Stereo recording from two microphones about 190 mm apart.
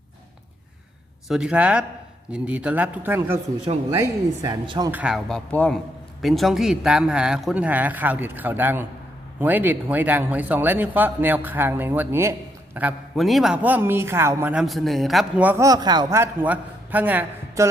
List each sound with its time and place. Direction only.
1.3 s a man's voice: 5° right (ahead or behind); by 4.9 s 25° right (ahead or behind)
4.9 s a man's voice: 5° right (ahead or behind)
14.5 s speech: centre (ahead or behind)